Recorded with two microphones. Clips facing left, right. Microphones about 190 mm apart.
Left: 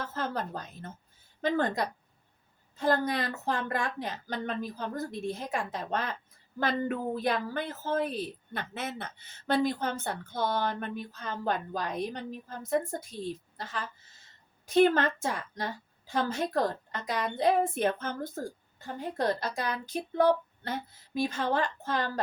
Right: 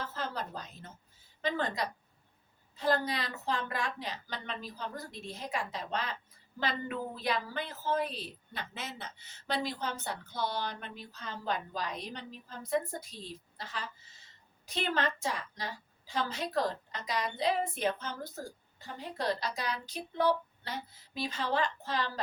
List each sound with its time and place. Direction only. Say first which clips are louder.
0.0 s a woman's voice: left 4 dB; 50° left (ahead or behind)